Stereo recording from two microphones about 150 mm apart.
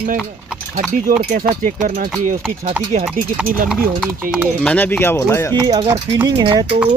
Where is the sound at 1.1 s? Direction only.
65° right (ahead or behind).